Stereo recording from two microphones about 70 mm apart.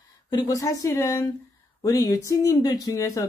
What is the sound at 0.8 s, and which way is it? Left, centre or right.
Speech, left.